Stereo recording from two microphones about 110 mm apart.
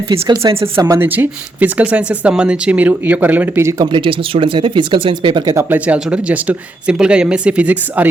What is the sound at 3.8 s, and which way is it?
Speech, 50° right (ahead or behind).